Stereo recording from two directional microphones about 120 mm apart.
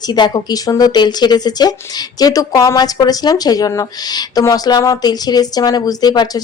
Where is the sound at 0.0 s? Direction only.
35° left (ahead or behind).